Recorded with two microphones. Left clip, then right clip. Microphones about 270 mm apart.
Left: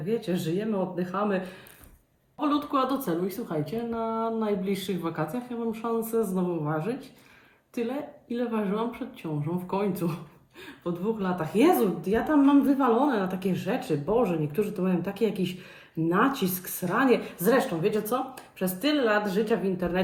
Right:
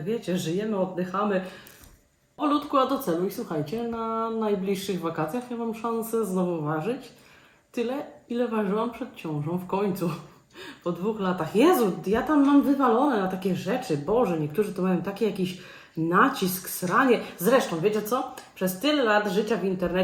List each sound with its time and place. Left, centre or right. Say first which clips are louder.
0.1 s speech: even; centre
2.4 s speech: right 3 dB; centre